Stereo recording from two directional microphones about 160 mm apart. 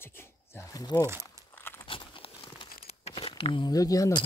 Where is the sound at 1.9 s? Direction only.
35° left (ahead or behind).